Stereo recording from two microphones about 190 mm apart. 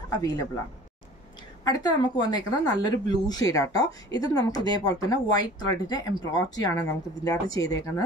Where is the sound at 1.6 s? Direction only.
20° left (ahead or behind).